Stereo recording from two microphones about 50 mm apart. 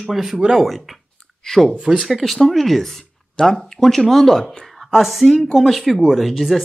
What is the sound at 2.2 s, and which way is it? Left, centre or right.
Speech, centre.